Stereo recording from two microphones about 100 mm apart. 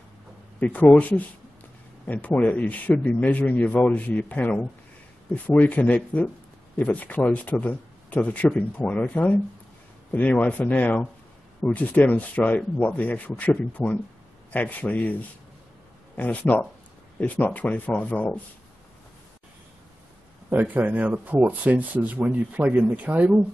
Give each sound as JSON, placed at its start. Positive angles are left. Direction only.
{"t": 0.6, "sound": "speech", "side_deg": 15}
{"t": 16.2, "sound": "speech", "side_deg": 15}
{"t": 20.4, "sound": "speech", "side_deg": -15}